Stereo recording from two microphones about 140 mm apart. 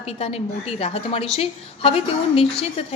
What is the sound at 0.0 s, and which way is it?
A woman's voice, 45° left (ahead or behind).